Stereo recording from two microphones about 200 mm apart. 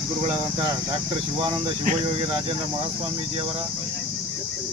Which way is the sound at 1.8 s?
40° right (ahead or behind).